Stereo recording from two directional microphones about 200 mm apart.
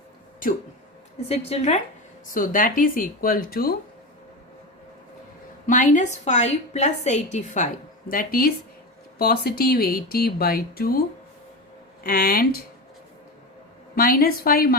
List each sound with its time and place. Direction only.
1.3 s a woman's voice: 30° left (ahead or behind)
2.2 s speech: 45° left (ahead or behind)
5.6 s a woman's voice: 40° left (ahead or behind)
12.0 s speech: 45° left (ahead or behind)
13.9 s speech: 45° left (ahead or behind)